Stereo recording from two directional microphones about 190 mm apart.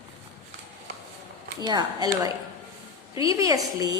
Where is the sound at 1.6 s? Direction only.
20° right (ahead or behind).